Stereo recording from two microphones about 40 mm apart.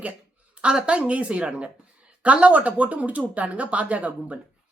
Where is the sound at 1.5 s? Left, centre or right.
Right.